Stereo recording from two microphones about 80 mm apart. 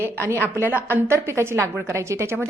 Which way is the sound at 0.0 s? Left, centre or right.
Right.